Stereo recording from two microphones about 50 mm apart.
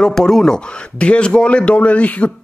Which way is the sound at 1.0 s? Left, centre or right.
Left.